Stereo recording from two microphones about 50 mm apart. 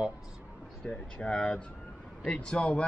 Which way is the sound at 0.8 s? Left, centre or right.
Left.